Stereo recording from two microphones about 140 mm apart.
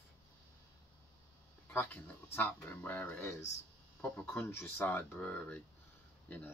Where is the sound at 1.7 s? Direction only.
10° left (ahead or behind).